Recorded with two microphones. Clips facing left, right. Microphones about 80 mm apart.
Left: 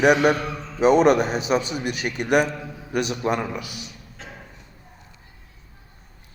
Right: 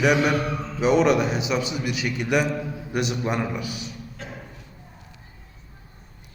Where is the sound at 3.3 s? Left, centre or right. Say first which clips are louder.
Right 1 dB; right.